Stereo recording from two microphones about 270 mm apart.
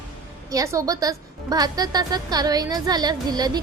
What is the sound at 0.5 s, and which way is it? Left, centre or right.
A woman's voice, centre.